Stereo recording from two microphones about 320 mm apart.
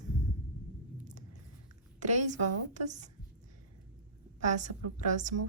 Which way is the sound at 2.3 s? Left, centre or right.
Right.